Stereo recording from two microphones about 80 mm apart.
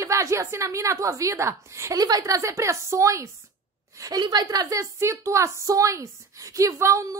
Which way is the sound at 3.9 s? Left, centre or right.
Right.